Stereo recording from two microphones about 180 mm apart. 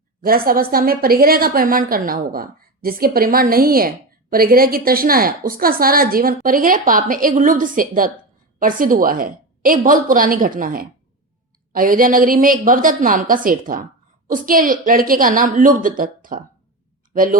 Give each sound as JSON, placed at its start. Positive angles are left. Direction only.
{"t": 0.3, "sound": "a woman's voice", "side_deg": -55}